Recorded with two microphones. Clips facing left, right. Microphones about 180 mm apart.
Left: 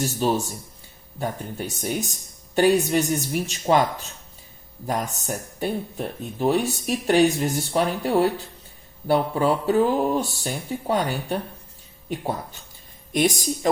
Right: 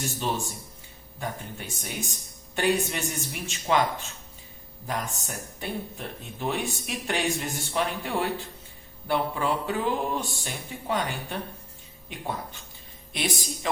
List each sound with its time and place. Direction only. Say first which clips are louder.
0.0 s speech: left 7 dB; 40° left (ahead or behind)